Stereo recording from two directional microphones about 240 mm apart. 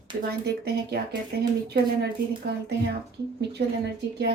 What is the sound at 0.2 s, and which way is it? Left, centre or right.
Speech, right.